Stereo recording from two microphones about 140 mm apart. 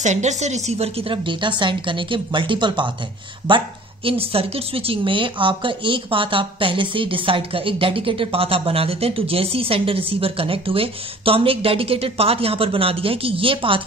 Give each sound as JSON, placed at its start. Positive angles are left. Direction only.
{"t": 0.0, "sound": "a woman's voice", "side_deg": -55}